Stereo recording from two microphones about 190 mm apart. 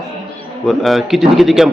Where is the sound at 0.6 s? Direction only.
Centre (ahead or behind).